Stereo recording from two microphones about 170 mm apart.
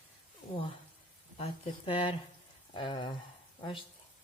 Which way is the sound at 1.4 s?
30° left (ahead or behind).